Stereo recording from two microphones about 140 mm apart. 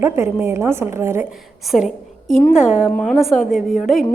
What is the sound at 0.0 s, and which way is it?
A woman's voice, 20° right (ahead or behind).